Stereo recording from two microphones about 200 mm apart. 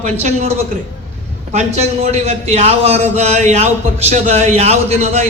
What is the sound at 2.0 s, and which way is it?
A man's voice, 30° right (ahead or behind).